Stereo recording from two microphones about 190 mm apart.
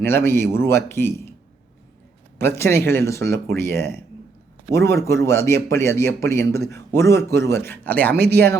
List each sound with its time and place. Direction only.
0.0 s speech: 10° left (ahead or behind)
2.4 s speech: 15° left (ahead or behind)
8.1 s speech: 55° right (ahead or behind)